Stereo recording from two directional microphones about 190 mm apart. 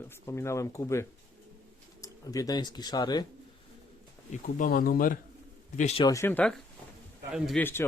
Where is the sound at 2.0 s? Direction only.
20° left (ahead or behind).